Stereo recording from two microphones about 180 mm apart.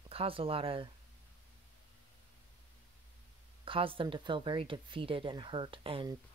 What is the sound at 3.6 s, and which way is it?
Speech, 30° right (ahead or behind).